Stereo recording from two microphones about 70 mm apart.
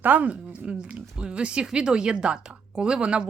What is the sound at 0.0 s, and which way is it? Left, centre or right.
A woman's voice, right.